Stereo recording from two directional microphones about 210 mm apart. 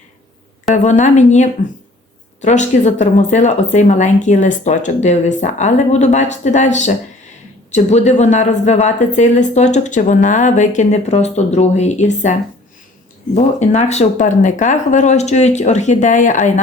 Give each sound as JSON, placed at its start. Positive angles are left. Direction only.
{"t": 0.7, "sound": "a woman's voice", "side_deg": 35}